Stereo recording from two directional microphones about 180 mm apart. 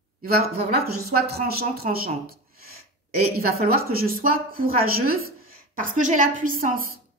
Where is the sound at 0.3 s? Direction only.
60° right (ahead or behind).